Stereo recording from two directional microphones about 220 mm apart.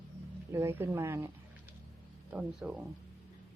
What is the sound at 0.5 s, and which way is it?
Speech, 10° right (ahead or behind).